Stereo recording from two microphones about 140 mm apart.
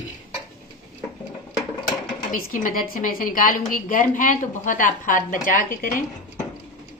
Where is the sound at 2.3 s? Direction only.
75° left (ahead or behind).